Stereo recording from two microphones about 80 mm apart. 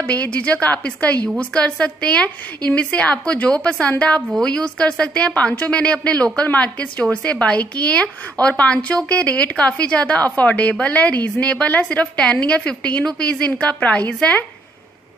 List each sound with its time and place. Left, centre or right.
0.0 s a woman's voice: centre